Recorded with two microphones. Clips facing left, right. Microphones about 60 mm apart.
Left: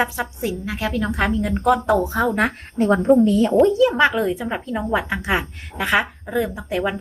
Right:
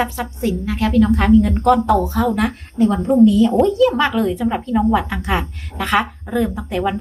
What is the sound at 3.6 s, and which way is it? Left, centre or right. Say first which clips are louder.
A woman's voice: even; centre.